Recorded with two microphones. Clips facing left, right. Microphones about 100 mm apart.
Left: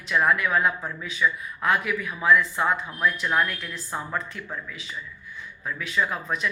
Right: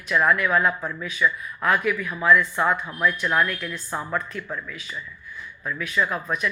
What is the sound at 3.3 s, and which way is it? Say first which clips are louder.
Speech: right 2 dB; 25° left (ahead or behind).